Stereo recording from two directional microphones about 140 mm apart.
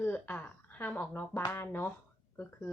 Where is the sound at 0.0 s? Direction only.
10° left (ahead or behind).